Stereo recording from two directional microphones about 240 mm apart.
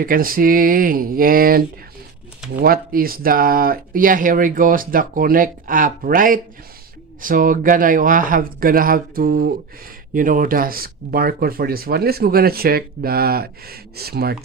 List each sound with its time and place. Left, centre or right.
0.0 s speech: right